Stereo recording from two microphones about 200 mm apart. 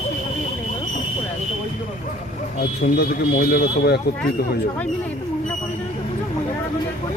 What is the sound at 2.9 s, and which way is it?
Speech, 50° left (ahead or behind).